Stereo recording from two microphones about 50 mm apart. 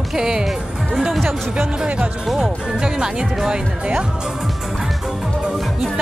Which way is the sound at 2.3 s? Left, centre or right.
Centre.